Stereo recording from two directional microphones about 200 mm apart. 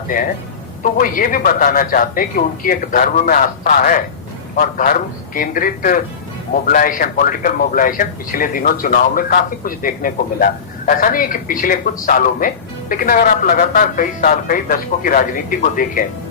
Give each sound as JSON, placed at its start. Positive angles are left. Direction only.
{"t": 0.8, "sound": "a man's voice", "side_deg": 45}